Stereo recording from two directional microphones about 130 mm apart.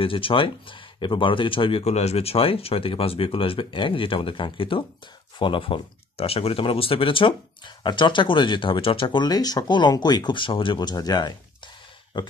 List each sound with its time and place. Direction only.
0.0 s speech: 40° left (ahead or behind)